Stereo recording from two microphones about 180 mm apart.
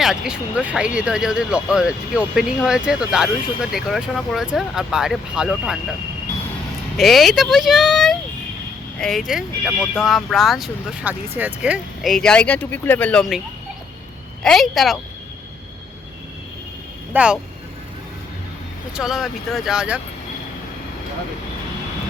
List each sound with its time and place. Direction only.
0.0 s speech: 5° right (ahead or behind)
6.9 s speech: centre (ahead or behind)
14.4 s speech: centre (ahead or behind)
17.2 s speech: 5° right (ahead or behind)
18.9 s speech: centre (ahead or behind)